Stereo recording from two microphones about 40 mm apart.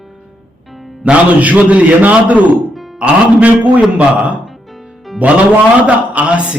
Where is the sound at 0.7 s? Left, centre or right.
Centre.